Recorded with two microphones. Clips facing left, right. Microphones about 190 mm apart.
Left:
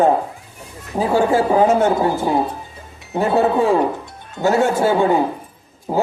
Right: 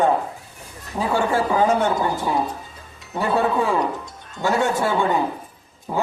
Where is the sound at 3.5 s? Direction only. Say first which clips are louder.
Left 5 dB; 30° left (ahead or behind).